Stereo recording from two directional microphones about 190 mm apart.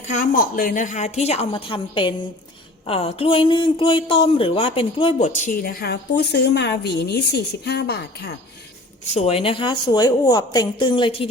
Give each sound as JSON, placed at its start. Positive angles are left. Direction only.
{"t": 0.0, "sound": "speech", "side_deg": 40}
{"t": 9.1, "sound": "a woman's voice", "side_deg": 30}